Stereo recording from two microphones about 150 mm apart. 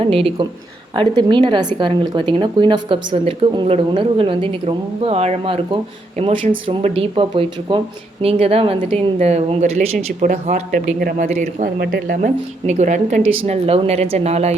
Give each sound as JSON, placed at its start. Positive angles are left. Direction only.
{"t": 0.0, "sound": "speech", "side_deg": -40}
{"t": 11.8, "sound": "speech", "side_deg": -90}
{"t": 12.6, "sound": "speech", "side_deg": -50}
{"t": 13.4, "sound": "speech", "side_deg": -40}